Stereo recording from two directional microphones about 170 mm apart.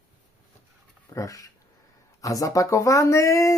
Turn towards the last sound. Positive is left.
turn(degrees=20)  # may be behind; listen again after turning